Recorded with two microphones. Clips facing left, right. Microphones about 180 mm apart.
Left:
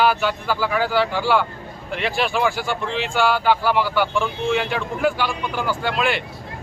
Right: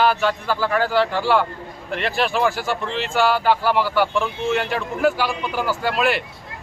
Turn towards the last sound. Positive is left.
turn(degrees=-5)  # may be behind; listen again after turning